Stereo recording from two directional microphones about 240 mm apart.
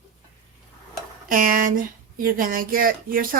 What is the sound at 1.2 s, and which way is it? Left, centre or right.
Speech, right.